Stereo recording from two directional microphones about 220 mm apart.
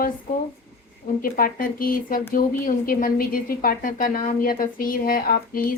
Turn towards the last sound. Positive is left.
turn(degrees=40)  # may be behind; listen again after turning